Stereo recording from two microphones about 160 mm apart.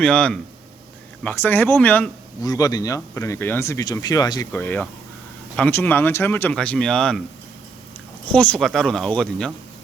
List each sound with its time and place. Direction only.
0.0 s speech: 5° left (ahead or behind)
2.4 s speech: 20° left (ahead or behind)
4.5 s speech: 10° left (ahead or behind)
8.3 s speech: 5° left (ahead or behind)